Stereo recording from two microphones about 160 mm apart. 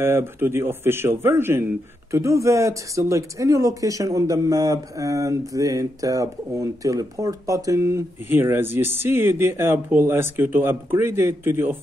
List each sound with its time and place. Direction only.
0.0 s a man's voice: 15° right (ahead or behind)